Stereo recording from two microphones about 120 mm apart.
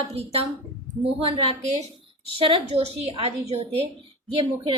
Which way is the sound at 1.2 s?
50° right (ahead or behind).